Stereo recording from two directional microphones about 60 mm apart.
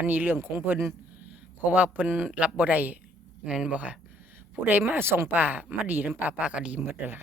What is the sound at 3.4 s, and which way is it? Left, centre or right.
Speech, centre.